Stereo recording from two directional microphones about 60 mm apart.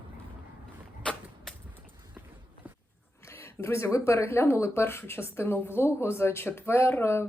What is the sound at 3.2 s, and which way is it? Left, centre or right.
Speech, left.